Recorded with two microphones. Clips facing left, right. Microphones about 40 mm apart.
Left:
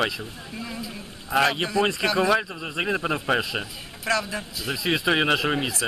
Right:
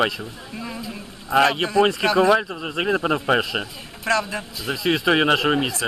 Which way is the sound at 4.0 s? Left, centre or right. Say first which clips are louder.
Right 3 dB; centre.